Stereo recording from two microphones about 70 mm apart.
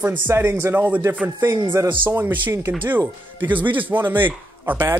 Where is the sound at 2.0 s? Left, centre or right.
Right.